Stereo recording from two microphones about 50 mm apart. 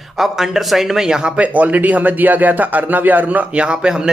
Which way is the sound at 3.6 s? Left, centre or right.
Centre.